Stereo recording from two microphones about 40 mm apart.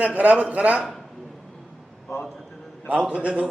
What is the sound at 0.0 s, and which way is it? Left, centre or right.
Speech, right.